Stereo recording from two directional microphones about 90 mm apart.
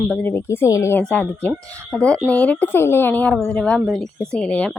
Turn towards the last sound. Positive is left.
turn(degrees=15)  # may be behind; listen again after turning